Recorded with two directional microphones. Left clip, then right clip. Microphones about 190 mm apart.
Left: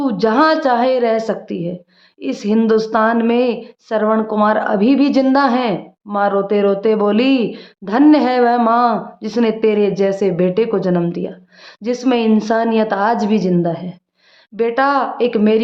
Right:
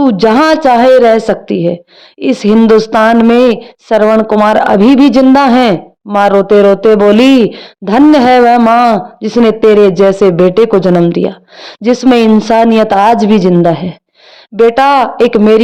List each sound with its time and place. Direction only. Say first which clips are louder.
0.0 s a woman's voice: right 6 dB; 40° right (ahead or behind)